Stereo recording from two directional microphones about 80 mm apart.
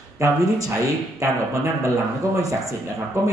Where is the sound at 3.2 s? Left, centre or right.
Right.